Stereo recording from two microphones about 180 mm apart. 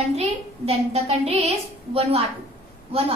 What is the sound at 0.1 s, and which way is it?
A woman's voice, 35° right (ahead or behind).